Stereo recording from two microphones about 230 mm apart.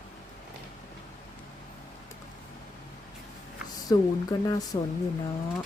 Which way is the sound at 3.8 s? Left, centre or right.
Centre.